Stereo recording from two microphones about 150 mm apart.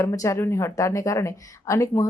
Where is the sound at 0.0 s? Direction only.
20° left (ahead or behind).